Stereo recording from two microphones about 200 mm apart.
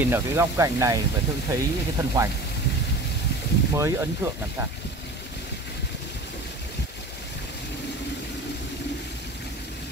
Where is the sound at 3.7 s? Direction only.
15° right (ahead or behind).